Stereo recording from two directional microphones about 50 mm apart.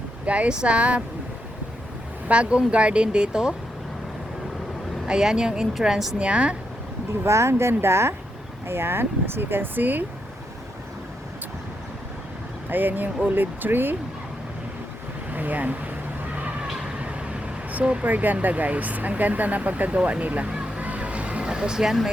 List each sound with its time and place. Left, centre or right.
0.3 s speech: right
2.2 s speech: right
5.0 s a woman's voice: centre
6.1 s speech: right
7.3 s speech: right
8.6 s speech: right
12.6 s speech: right
15.3 s a sound: right
17.0 s vehicle: right
18.0 s speech: right
20.5 s a sound: right
20.8 s vehicle: right; by 22.1 s centre